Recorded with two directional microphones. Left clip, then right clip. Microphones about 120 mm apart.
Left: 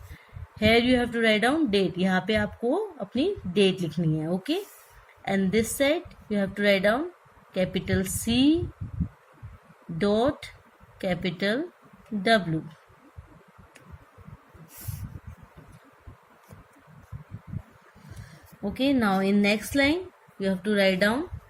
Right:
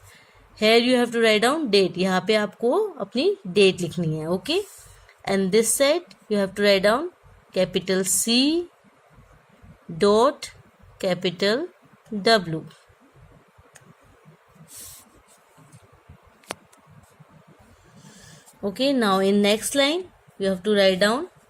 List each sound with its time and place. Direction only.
0.6 s a woman's voice: 90° right
10.0 s a woman's voice: 90° right
18.9 s a woman's voice: 90° right